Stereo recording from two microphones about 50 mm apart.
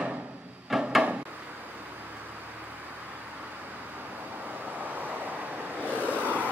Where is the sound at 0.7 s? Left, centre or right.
Centre.